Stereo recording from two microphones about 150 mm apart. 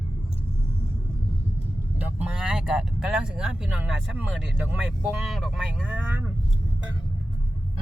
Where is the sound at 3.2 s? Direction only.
5° right (ahead or behind).